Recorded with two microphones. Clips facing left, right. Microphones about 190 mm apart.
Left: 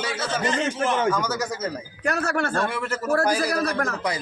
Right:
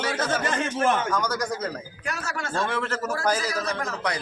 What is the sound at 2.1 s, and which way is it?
Speech, 60° left (ahead or behind).